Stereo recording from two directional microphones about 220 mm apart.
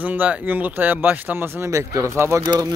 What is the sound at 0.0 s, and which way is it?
Speech, 10° right (ahead or behind).